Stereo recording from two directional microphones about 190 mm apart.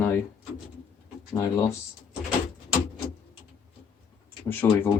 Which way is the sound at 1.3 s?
15° left (ahead or behind).